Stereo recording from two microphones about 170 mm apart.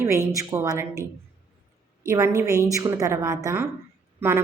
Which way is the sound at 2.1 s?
15° right (ahead or behind).